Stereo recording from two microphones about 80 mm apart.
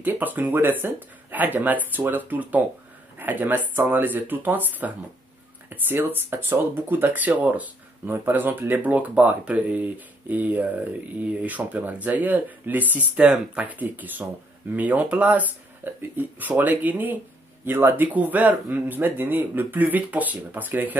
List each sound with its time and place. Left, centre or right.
0.0 s speech: right